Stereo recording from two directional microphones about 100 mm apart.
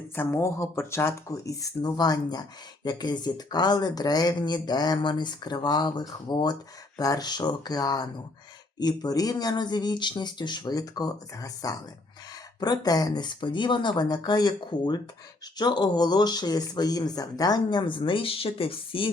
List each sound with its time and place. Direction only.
0.2 s speech: 25° left (ahead or behind); by 19.1 s 60° left (ahead or behind)